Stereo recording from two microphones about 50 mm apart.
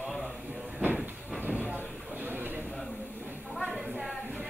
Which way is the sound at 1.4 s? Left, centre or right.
Right.